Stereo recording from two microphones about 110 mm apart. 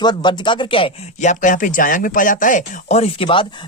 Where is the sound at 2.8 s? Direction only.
85° left.